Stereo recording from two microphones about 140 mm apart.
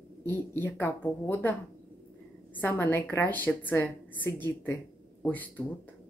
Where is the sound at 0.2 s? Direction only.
15° left (ahead or behind).